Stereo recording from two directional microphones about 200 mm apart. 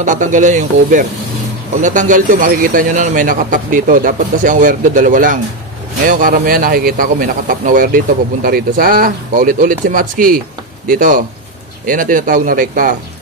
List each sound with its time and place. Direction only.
0.0 s a man's voice: 40° right (ahead or behind)